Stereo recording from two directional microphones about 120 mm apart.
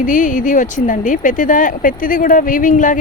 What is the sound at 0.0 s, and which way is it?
Speech, 90° left.